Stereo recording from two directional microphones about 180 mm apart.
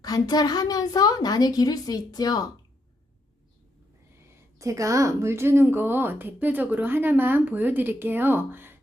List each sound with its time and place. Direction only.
0.0 s a woman's voice: 20° left (ahead or behind)
4.5 s speech: 15° right (ahead or behind)